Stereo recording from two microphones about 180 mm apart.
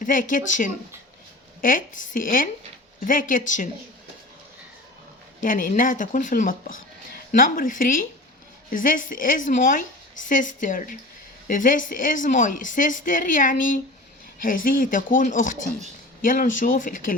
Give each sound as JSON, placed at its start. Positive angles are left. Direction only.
{"t": 0.0, "sound": "speech", "side_deg": 50}
{"t": 5.4, "sound": "speech", "side_deg": 50}